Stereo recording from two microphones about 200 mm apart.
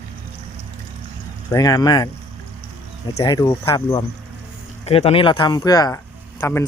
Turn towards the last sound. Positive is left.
turn(degrees=10)  # may be behind; listen again after turning